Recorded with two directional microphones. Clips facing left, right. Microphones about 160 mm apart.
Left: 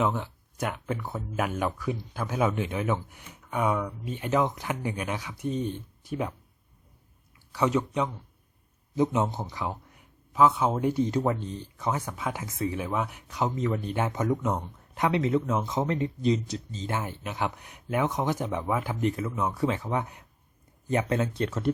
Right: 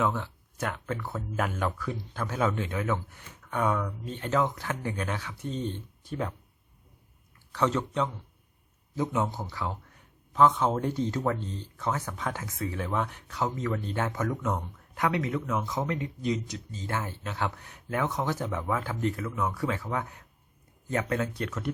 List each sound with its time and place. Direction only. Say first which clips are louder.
0.0 s speech: left 1 dB; 15° left (ahead or behind)
7.5 s speech: left 2 dB; 10° left (ahead or behind); by 21.7 s 30° left (ahead or behind)